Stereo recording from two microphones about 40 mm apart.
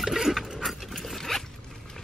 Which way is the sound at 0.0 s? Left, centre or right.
Centre.